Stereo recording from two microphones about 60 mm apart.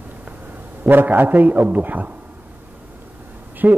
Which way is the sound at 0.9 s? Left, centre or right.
Right.